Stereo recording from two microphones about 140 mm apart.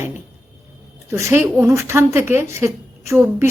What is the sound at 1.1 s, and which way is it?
A woman's voice, 15° right (ahead or behind).